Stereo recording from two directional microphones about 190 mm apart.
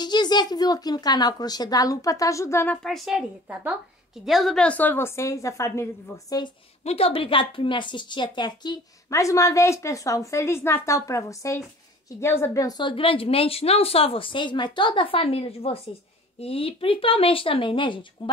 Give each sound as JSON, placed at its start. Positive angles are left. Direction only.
{"t": 0.0, "sound": "a woman's voice", "side_deg": 20}
{"t": 6.8, "sound": "a woman's voice", "side_deg": 30}